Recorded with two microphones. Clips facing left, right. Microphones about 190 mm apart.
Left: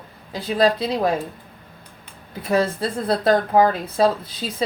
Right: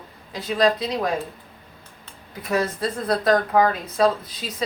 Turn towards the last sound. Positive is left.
turn(degrees=30)  # may be behind; listen again after turning